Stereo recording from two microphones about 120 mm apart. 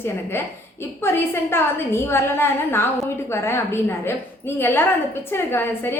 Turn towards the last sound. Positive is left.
turn(degrees=20)  # may be behind; listen again after turning